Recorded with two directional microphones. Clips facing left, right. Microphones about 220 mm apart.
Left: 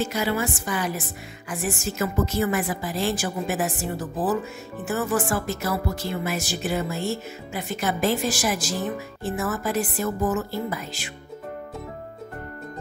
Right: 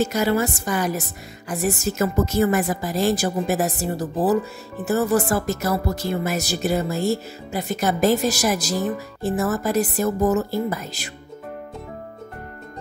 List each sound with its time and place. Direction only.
0.0 s a woman's voice: 45° right (ahead or behind)